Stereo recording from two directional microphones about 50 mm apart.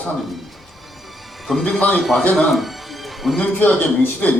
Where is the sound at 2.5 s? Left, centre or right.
Centre.